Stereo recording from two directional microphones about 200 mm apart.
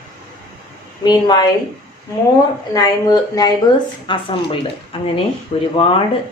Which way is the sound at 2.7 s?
20° left (ahead or behind).